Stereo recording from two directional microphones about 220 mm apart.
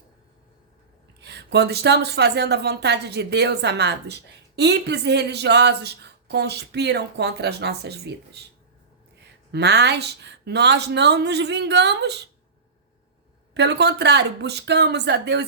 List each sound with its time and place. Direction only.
1.2 s a woman's voice: 50° right (ahead or behind)
9.5 s a woman's voice: 50° right (ahead or behind)
13.5 s a woman's voice: 50° right (ahead or behind)